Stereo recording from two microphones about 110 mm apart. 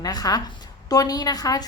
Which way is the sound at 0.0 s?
35° left (ahead or behind).